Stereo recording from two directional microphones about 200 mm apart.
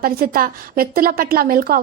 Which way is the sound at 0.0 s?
45° right (ahead or behind).